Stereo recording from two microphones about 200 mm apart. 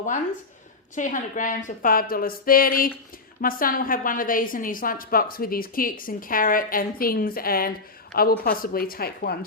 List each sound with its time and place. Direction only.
0.9 s a woman's voice: 40° left (ahead or behind)